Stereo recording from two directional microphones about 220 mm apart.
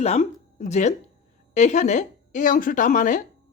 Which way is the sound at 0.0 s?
30° left (ahead or behind).